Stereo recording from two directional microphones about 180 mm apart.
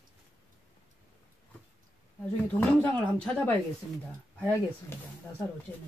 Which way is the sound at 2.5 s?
10° left (ahead or behind).